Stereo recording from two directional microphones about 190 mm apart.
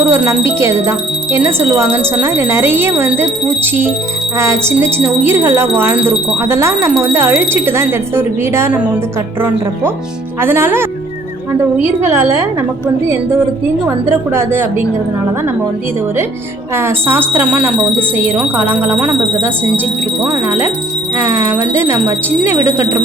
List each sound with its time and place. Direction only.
0.1 s speech: 15° right (ahead or behind)
10.4 s speech: 10° right (ahead or behind)
13.8 s speech: 15° right (ahead or behind)
16.7 s speech: 10° right (ahead or behind)